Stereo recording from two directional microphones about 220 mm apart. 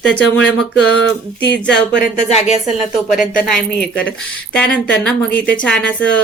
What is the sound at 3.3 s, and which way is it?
A woman's voice, 5° left (ahead or behind).